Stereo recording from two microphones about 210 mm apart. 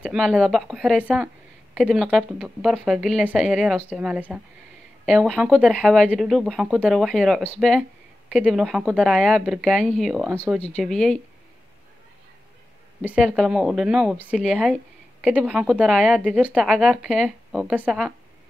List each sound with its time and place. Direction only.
0.0 s speech: centre (ahead or behind)
10.3 s speech: 10° right (ahead or behind)
10.6 s speech: 5° left (ahead or behind)
13.0 s speech: 5° right (ahead or behind)